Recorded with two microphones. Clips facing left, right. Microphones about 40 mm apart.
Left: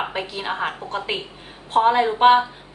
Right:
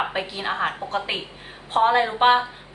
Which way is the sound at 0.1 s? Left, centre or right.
Centre.